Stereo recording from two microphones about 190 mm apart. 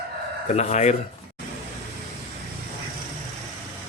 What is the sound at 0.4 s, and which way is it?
Speech, 35° left (ahead or behind).